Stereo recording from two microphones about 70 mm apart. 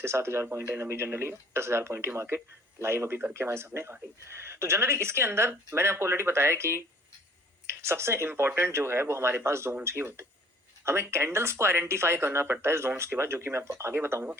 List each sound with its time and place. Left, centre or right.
0.0 s speech: right